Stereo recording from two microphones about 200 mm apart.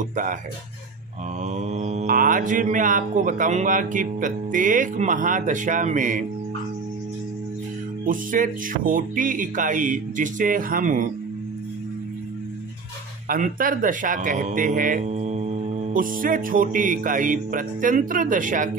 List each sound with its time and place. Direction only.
0.1 s a man's voice: 40° right (ahead or behind)
1.4 s a man's voice: 35° right (ahead or behind)
8.0 s a man's voice: 40° right (ahead or behind)
13.3 s a man's voice: 45° right (ahead or behind)